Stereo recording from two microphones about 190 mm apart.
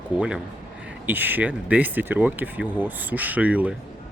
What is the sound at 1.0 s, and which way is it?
Speech, 10° right (ahead or behind).